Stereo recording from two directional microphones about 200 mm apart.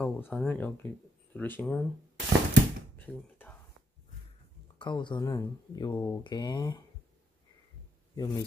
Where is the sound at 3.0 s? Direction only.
10° left (ahead or behind).